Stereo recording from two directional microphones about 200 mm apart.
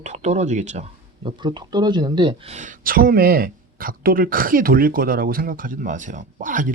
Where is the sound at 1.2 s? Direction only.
20° right (ahead or behind).